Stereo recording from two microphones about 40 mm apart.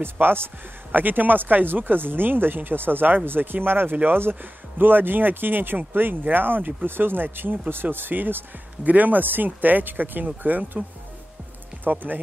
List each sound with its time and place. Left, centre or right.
0.0 s a man's voice: right
0.9 s speech: right
3.9 s speech: right
4.2 s speech: right
8.8 s speech: right
11.8 s speech: right